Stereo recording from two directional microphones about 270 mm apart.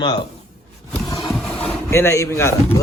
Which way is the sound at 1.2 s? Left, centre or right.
Centre.